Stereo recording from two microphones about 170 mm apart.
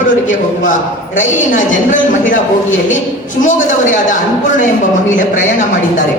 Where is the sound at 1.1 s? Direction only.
50° left (ahead or behind).